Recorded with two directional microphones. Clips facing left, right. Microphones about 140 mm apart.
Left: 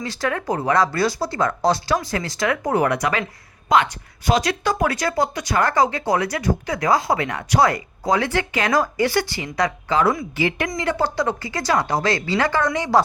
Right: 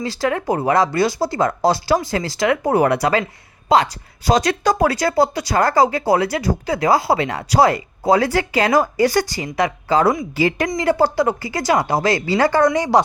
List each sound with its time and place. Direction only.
0.0 s speech: 30° right (ahead or behind)
9.0 s speech: 40° right (ahead or behind)